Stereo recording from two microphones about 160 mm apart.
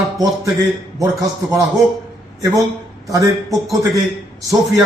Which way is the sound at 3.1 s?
20° right (ahead or behind).